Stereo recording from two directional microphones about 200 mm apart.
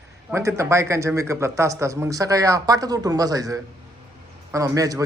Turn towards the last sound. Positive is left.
turn(degrees=-15)  # may be behind; listen again after turning